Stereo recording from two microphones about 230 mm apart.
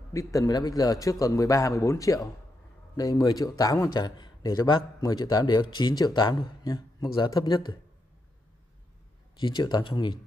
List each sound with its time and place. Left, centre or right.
0.1 s a man's voice: centre
9.4 s speech: centre